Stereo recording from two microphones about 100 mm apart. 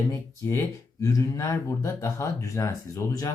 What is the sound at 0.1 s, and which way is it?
Speech, 30° left (ahead or behind).